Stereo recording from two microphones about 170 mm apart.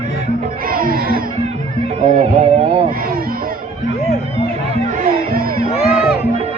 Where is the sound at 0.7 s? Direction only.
55° right (ahead or behind).